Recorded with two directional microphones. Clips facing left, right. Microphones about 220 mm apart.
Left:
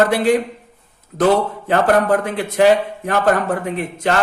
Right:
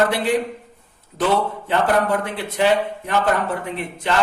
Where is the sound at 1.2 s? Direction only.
45° left (ahead or behind).